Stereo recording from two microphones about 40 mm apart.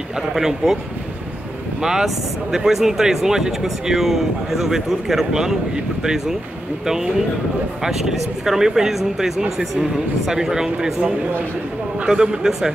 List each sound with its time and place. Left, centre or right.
0.3 s speech: centre
1.8 s speech: centre
10.3 s speech: centre
12.1 s speech: right